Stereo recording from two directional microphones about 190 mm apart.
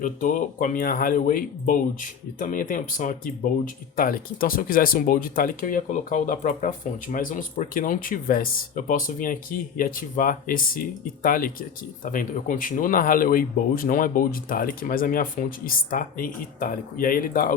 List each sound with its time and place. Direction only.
0.0 s speech: 45° left (ahead or behind)